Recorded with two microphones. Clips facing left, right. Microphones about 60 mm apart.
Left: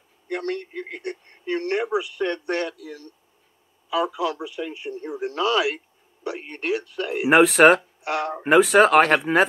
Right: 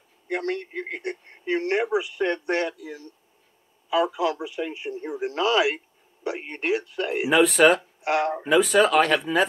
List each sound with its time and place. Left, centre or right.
0.3 s speech: centre
7.2 s speech: left
8.0 s speech: centre
8.5 s speech: left